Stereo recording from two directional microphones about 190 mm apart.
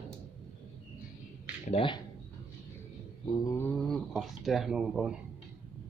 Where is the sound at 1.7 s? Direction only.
30° left (ahead or behind).